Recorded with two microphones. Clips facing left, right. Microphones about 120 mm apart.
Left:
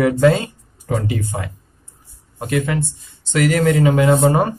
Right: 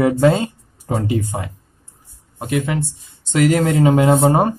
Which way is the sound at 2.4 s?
10° right (ahead or behind).